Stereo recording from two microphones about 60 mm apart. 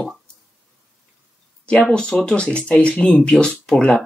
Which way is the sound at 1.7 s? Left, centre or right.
Centre.